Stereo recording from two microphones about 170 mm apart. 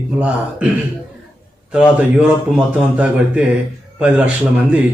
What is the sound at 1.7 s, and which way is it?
Speech, 5° right (ahead or behind).